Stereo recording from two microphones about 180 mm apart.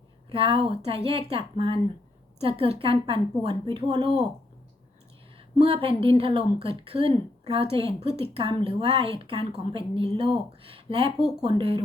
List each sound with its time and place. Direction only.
0.3 s a woman's voice: 30° right (ahead or behind)
5.5 s a woman's voice: 30° right (ahead or behind)